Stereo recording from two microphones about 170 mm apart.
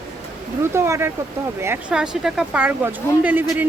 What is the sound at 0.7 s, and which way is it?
Speech, 15° right (ahead or behind).